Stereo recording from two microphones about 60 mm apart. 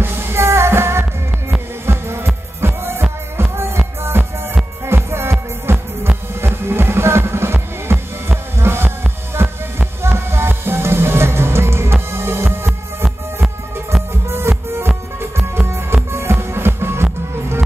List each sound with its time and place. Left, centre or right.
0.0 s music: right
14.3 s music: right